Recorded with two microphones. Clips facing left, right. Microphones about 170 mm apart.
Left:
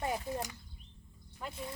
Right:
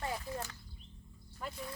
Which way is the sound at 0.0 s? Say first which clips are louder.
Left 4 dB; 20° left (ahead or behind).